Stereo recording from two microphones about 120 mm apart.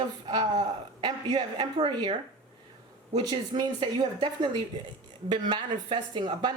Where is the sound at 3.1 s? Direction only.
40° right (ahead or behind).